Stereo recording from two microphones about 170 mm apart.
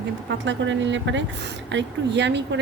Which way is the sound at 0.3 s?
90° right.